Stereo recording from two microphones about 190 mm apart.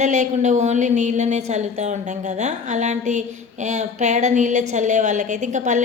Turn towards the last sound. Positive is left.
turn(degrees=-40)  # may be behind; listen again after turning